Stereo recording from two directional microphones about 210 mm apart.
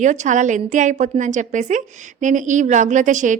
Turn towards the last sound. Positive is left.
turn(degrees=-35)  # may be behind; listen again after turning